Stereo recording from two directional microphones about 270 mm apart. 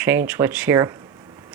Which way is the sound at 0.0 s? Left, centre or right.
Centre.